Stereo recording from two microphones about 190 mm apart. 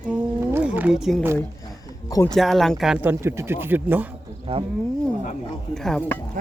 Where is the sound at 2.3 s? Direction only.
Centre (ahead or behind).